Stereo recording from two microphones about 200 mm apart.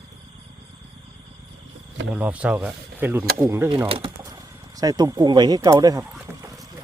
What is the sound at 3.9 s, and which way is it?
Speech, 25° right (ahead or behind).